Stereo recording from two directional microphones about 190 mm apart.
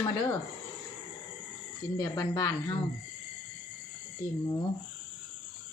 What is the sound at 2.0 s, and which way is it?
Speech, 20° left (ahead or behind).